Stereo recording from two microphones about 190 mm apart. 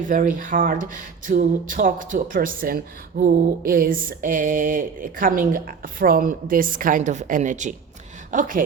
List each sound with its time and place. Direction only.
0.1 s speech: 45° right (ahead or behind)